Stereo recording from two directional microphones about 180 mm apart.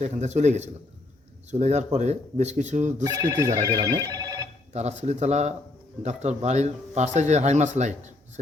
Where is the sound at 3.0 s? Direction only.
20° right (ahead or behind).